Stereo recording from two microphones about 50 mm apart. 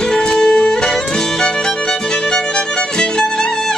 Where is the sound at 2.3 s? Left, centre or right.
Centre.